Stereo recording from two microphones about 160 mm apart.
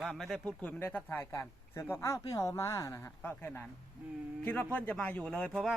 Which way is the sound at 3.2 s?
10° left (ahead or behind).